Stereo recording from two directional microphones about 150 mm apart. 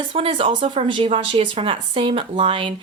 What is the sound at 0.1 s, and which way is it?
Speech, 35° right (ahead or behind).